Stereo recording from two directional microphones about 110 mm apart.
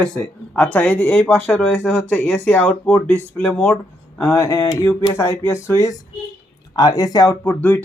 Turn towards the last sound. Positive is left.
turn(degrees=15)  # may be behind; listen again after turning